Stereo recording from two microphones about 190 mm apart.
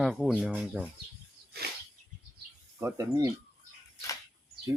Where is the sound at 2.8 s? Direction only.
15° right (ahead or behind).